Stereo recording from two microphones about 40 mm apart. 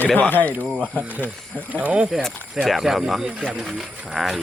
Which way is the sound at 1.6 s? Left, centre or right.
Right.